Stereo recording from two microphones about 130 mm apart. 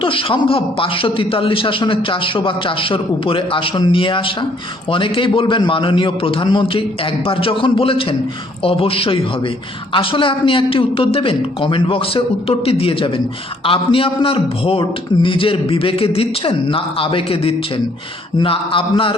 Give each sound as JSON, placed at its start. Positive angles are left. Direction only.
{"t": 0.0, "sound": "a man's voice", "side_deg": 40}